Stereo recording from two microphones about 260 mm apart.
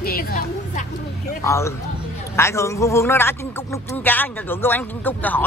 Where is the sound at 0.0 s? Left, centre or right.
Left.